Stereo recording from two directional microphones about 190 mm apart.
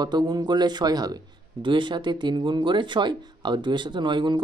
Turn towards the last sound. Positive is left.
turn(degrees=-25)  # may be behind; listen again after turning